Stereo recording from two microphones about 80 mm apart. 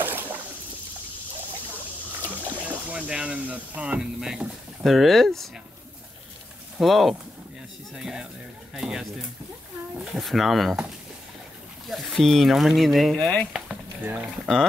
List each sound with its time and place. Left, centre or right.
0.0 s a sound: right
2.2 s speech: right; by 5.5 s centre
6.8 s speech: centre
11.9 s speech: centre
14.0 s speech: centre